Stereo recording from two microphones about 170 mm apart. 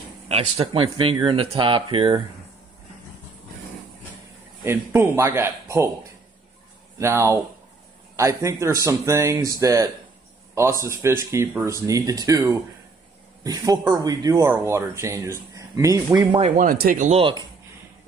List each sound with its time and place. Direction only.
0.3 s speech: 35° right (ahead or behind)
4.6 s speech: 15° right (ahead or behind)
7.0 s speech: 15° right (ahead or behind)
16.3 s speech: 45° right (ahead or behind)
16.7 s speech: 55° right (ahead or behind)